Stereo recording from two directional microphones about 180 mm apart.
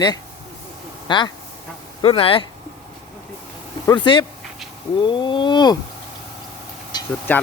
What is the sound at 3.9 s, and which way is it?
Speech, 25° left (ahead or behind).